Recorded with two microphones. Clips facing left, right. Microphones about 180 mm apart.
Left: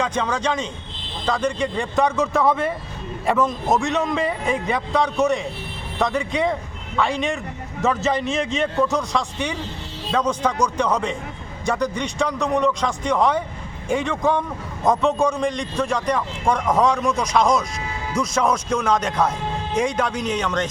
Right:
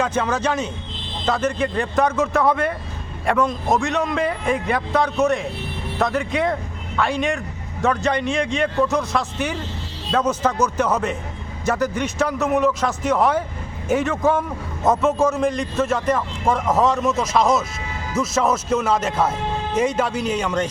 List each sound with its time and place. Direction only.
0.0 s speech: 5° right (ahead or behind)